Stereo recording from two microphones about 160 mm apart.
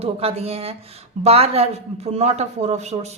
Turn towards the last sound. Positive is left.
turn(degrees=-45)  # may be behind; listen again after turning